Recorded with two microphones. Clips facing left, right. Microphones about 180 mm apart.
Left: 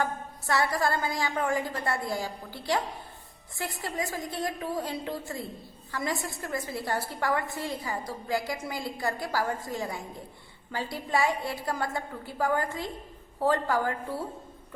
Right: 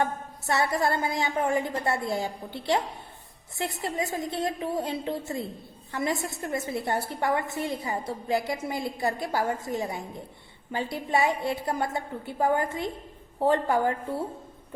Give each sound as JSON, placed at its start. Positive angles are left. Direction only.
{"t": 0.0, "sound": "a woman's voice", "side_deg": -25}